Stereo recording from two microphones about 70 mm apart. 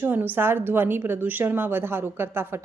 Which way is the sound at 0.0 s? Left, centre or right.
Right.